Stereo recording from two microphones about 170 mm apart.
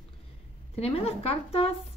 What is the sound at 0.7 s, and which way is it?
Speech, 35° left (ahead or behind).